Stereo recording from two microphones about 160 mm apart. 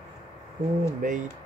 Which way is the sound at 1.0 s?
55° right (ahead or behind).